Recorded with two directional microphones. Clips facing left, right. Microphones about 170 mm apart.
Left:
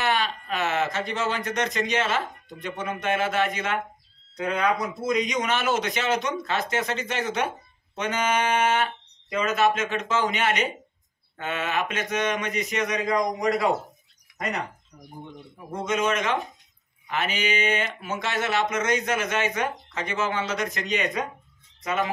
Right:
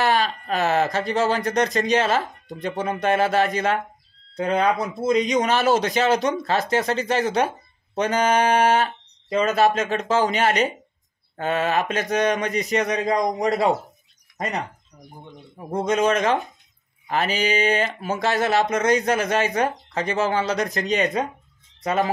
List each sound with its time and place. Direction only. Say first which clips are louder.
0.0 s speech: right 5 dB; 40° right (ahead or behind)
15.7 s speech: right 5 dB; 35° right (ahead or behind)